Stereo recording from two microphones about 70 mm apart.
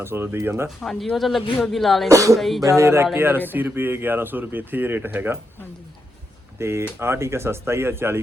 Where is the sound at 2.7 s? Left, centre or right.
Right.